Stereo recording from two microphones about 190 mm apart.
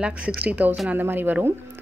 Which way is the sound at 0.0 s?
5° right (ahead or behind).